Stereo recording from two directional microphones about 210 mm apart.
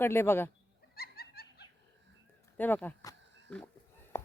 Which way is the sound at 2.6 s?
10° left (ahead or behind).